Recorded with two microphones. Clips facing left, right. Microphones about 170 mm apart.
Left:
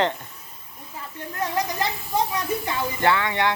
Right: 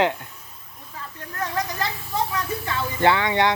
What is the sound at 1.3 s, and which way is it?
Speech, 15° left (ahead or behind).